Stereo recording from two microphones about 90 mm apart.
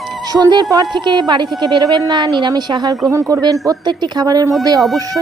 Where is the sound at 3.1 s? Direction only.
40° right (ahead or behind).